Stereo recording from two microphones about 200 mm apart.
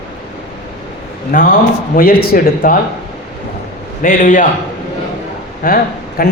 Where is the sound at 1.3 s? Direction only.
45° left (ahead or behind).